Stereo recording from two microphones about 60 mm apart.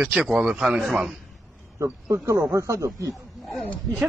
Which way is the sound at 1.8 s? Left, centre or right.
Right.